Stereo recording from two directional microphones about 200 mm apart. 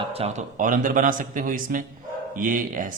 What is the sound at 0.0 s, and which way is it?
Speech, 30° right (ahead or behind).